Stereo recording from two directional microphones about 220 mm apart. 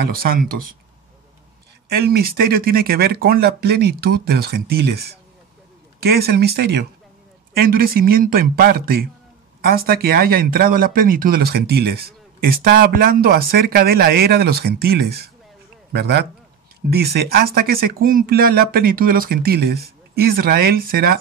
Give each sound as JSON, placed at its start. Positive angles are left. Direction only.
{"t": 0.1, "sound": "speech", "side_deg": -40}
{"t": 1.9, "sound": "speech", "side_deg": -45}
{"t": 5.9, "sound": "speech", "side_deg": -45}